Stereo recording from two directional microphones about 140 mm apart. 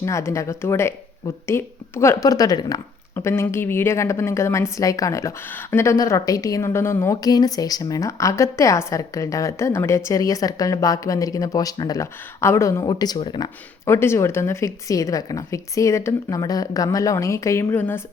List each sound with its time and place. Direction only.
0.0 s speech: 20° left (ahead or behind); by 13.5 s 35° left (ahead or behind)
13.8 s speech: 20° left (ahead or behind)